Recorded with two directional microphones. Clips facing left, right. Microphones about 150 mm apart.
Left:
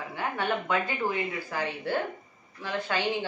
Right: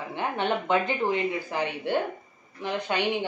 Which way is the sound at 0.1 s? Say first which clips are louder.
Right 3 dB; 20° right (ahead or behind).